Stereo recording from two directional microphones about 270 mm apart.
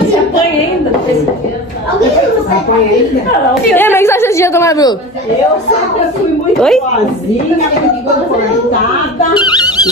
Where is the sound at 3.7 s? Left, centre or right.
Centre.